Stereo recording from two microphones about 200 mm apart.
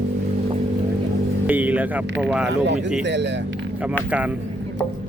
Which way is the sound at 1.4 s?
10° right (ahead or behind).